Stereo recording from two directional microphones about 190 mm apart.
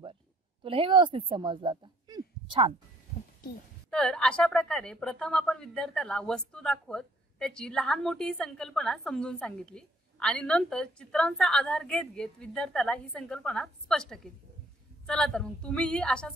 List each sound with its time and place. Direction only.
0.7 s speech: 25° right (ahead or behind)
3.9 s a woman's voice: 5° left (ahead or behind)